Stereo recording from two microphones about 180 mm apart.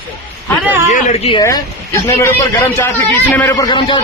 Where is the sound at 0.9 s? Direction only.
35° left (ahead or behind).